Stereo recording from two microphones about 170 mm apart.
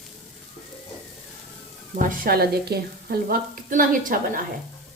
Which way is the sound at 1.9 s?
55° right (ahead or behind).